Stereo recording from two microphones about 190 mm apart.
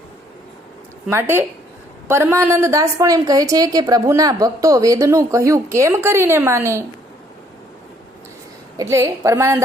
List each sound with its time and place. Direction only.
1.1 s a woman's voice: 10° right (ahead or behind)
8.8 s a woman's voice: 15° right (ahead or behind)